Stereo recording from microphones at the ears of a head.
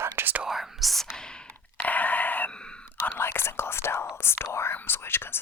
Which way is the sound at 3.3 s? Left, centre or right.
Left.